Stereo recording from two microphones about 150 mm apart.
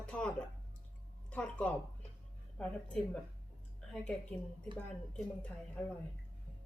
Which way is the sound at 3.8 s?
5° left (ahead or behind).